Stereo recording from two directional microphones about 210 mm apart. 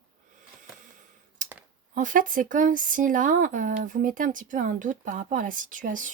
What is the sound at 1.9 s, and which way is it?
Speech, 40° right (ahead or behind).